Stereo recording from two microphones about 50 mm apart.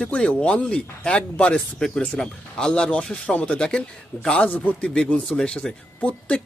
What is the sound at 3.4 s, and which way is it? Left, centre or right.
Speech, left.